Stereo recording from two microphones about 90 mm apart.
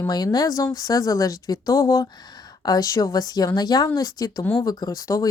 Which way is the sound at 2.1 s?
50° left (ahead or behind).